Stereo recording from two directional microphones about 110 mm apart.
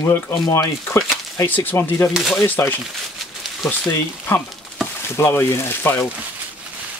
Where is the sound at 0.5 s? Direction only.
30° left (ahead or behind).